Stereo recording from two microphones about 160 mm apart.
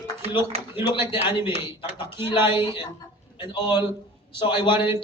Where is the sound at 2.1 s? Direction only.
30° left (ahead or behind).